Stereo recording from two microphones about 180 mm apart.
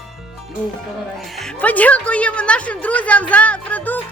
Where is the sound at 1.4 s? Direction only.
5° left (ahead or behind).